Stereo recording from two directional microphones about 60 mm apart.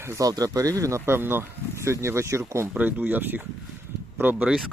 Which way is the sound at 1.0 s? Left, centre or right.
Right.